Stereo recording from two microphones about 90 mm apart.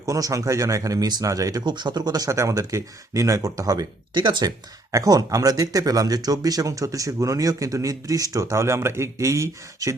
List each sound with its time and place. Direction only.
0.0 s speech: 40° right (ahead or behind)
1.6 s speech: 55° right (ahead or behind)
4.1 s speech: 60° right (ahead or behind)
4.9 s speech: 40° right (ahead or behind)